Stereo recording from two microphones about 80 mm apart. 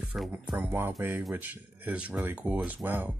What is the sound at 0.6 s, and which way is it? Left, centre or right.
Speech, right.